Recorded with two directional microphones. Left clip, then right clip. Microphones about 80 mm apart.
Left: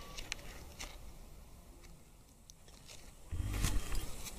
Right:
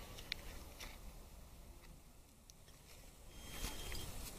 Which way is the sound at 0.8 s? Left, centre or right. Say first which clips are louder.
Left 5 dB; left.